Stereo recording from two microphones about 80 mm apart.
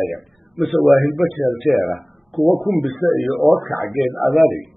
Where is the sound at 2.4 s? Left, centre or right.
Right.